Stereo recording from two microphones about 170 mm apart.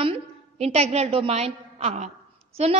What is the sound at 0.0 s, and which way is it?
A woman's voice, 35° right (ahead or behind).